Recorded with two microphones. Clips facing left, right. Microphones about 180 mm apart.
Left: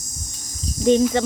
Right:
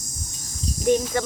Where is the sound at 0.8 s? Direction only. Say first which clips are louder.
Left 5 dB; 25° left (ahead or behind).